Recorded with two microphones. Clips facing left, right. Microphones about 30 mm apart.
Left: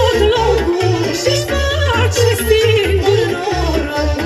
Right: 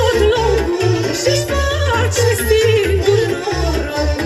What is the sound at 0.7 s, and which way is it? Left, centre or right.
Music, centre.